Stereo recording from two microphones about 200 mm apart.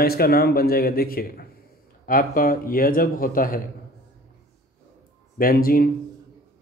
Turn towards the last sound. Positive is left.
turn(degrees=45)  # may be behind; listen again after turning